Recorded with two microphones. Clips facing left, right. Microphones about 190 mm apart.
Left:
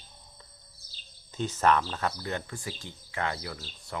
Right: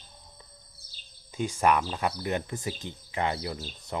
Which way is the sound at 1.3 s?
10° right (ahead or behind).